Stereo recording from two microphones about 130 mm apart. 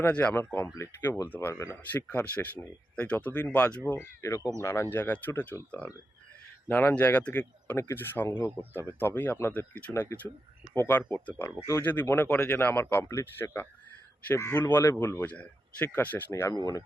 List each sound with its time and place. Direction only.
0.0 s speech: 10° left (ahead or behind)
16.3 s speech: 25° left (ahead or behind)